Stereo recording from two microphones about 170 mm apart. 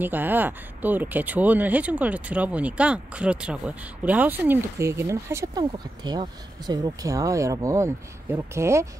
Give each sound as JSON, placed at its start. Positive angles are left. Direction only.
{"t": 0.0, "sound": "speech", "side_deg": -10}